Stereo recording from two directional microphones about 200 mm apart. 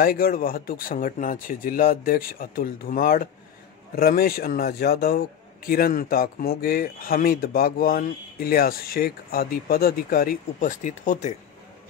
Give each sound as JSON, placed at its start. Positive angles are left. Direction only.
{"t": 0.0, "sound": "a man's voice", "side_deg": 45}